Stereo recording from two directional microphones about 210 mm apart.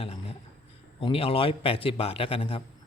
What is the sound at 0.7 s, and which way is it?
A man's voice, 25° left (ahead or behind).